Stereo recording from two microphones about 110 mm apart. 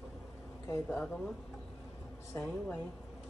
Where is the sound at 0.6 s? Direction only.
20° left (ahead or behind).